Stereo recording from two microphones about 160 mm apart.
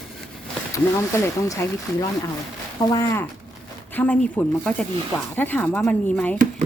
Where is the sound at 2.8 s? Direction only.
20° left (ahead or behind).